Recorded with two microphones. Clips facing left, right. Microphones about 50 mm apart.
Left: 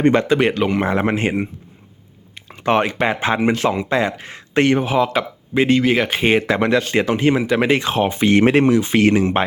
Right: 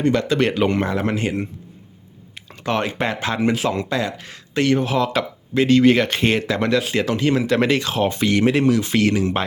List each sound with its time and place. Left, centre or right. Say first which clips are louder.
0.0 s speech: left 4 dB; left
0.6 s speech: even; centre
0.9 s speech: left 3 dB; left
2.6 s speech: left 5 dB; left
4.8 s speech: left 2 dB; centre
6.5 s speech: left 3 dB; left
7.4 s speech: left 1 dB; centre
7.7 s speech: left 2 dB; left